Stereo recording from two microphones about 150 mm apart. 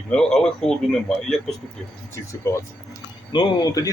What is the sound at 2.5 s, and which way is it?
Speech, 20° left (ahead or behind).